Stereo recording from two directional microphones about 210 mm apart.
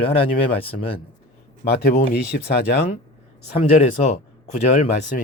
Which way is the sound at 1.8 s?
45° left (ahead or behind).